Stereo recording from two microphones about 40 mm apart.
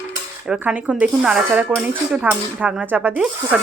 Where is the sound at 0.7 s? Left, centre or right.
Right.